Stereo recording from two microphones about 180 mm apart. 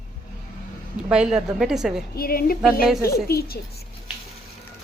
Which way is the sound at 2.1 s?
55° left (ahead or behind).